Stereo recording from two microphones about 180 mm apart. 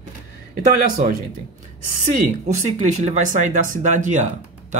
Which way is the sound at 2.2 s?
40° right (ahead or behind).